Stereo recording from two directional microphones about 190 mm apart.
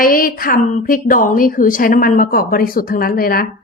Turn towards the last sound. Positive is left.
turn(degrees=50)  # may be behind; listen again after turning